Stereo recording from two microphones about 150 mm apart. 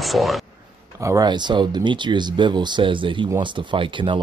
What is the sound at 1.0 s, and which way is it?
Speech, 25° right (ahead or behind).